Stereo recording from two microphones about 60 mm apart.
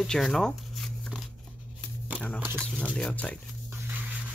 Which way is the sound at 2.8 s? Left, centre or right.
Centre.